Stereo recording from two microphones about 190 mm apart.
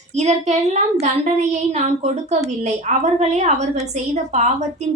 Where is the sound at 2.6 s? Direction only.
35° right (ahead or behind).